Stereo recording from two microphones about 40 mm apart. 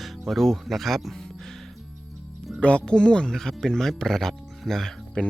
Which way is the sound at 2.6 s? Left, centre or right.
Left.